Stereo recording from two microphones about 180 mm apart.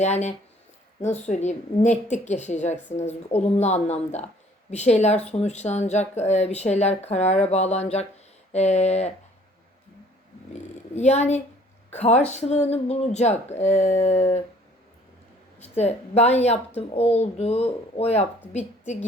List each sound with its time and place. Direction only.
0.0 s speech: 40° left (ahead or behind)
10.5 s purr: 40° left (ahead or behind)
11.9 s a woman's voice: 40° left (ahead or behind)
15.5 s a woman's voice: 35° left (ahead or behind)